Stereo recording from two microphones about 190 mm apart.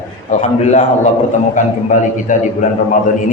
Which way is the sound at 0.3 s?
40° left (ahead or behind).